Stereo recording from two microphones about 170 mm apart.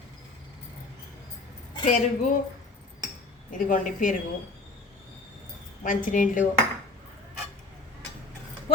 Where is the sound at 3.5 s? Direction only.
50° left (ahead or behind).